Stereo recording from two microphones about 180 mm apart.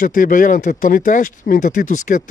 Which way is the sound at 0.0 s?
50° left (ahead or behind).